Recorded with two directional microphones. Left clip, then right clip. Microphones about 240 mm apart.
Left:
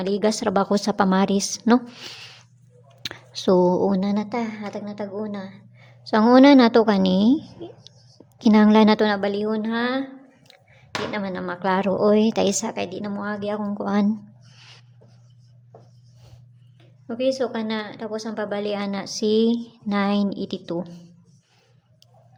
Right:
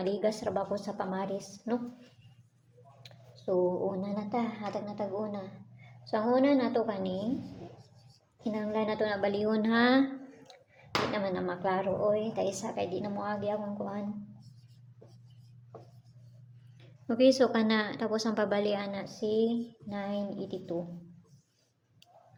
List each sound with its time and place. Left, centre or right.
0.0 s speech: left
3.0 s a woman's voice: left; by 5.5 s centre
6.1 s a woman's voice: left
8.4 s speech: left
9.3 s a woman's voice: centre
11.0 s a woman's voice: centre
12.0 s a woman's voice: left
13.7 s speech: left
17.1 s a woman's voice: centre
18.9 s speech: left